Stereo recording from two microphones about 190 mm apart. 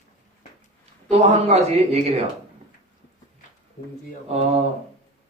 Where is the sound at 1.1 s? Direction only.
35° right (ahead or behind).